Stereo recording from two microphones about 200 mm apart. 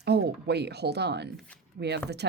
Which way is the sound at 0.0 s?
55° right (ahead or behind).